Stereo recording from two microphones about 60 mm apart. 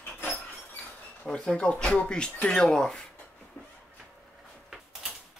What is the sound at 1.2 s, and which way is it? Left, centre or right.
Speech, centre.